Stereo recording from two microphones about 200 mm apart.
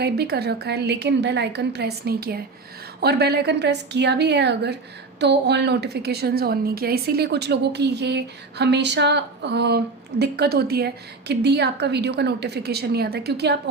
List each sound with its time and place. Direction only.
0.0 s a woman's voice: 55° right (ahead or behind)